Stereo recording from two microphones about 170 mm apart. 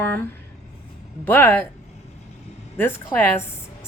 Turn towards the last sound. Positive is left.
turn(degrees=10)  # may be behind; listen again after turning